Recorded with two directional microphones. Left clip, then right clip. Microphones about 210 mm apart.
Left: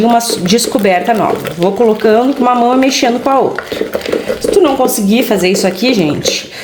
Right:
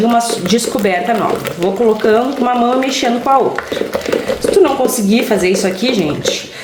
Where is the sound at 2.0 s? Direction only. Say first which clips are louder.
Left 3 dB; 35° left (ahead or behind).